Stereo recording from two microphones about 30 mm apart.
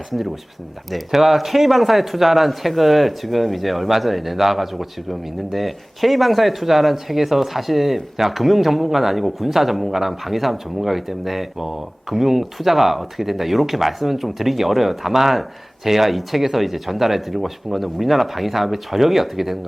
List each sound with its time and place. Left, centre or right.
0.9 s a man's voice: centre